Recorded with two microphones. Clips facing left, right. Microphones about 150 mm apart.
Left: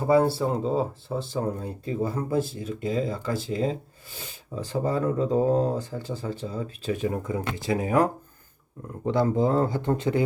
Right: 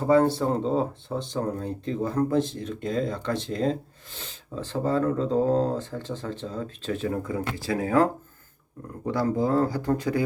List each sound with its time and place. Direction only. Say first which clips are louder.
0.0 s speech: right 1 dB; 10° left (ahead or behind)